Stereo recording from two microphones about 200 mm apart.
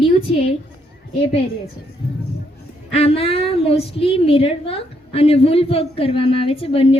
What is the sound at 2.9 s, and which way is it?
A woman's voice, 30° left (ahead or behind).